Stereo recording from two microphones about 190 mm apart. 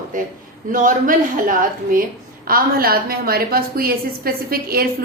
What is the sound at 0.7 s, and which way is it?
A woman's voice, 45° right (ahead or behind).